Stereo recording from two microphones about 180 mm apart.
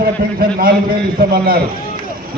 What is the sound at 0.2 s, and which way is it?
A man's voice, 55° right (ahead or behind).